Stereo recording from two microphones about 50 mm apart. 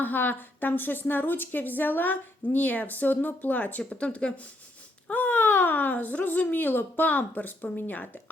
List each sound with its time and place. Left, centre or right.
0.0 s a woman's voice: left
5.1 s a woman's voice: left